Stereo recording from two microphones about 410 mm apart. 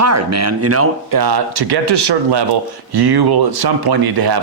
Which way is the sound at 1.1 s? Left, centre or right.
Right.